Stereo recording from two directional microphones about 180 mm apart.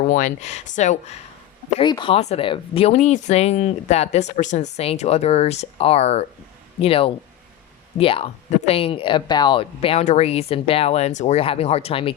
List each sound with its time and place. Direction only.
0.0 s speech: 45° left (ahead or behind)
1.8 s speech: 25° left (ahead or behind)